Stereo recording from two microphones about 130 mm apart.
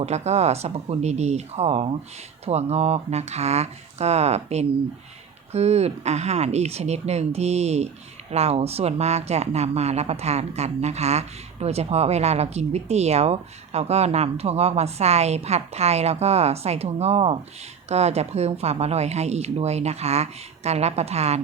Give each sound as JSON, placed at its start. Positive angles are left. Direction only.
{"t": 0.0, "sound": "speech", "side_deg": -55}